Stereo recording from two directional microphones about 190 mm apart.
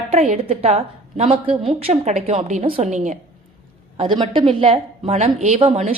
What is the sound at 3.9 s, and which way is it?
A woman's voice, 25° right (ahead or behind).